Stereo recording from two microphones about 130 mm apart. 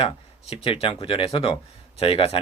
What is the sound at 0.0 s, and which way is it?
Speech, 45° left (ahead or behind).